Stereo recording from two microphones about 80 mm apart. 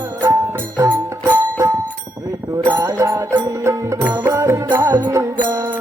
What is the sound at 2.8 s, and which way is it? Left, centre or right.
Music, right.